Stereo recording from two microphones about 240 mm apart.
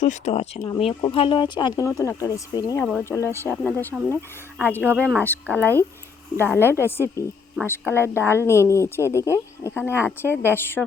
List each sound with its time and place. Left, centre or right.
0.0 s speech: left; by 10.8 s centre